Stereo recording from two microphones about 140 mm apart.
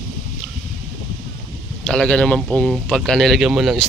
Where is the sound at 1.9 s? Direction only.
5° left (ahead or behind).